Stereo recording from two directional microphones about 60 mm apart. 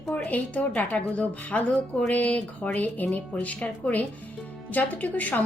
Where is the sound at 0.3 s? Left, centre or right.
Left.